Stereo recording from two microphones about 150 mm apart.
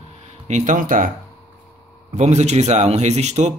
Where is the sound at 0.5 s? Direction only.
55° right (ahead or behind).